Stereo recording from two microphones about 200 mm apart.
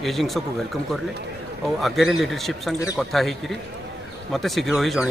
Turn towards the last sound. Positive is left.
turn(degrees=0)  # may be behind; listen again after turning